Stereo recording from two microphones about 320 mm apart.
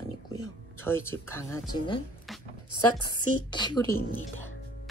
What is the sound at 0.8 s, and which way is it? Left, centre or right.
Speech, centre.